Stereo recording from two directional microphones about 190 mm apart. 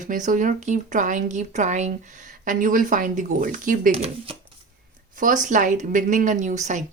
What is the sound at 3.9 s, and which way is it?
Speech, 30° right (ahead or behind).